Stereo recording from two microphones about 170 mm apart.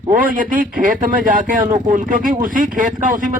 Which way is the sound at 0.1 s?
55° right (ahead or behind).